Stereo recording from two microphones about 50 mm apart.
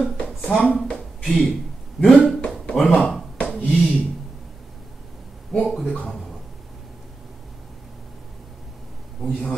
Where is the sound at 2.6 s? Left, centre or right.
Centre.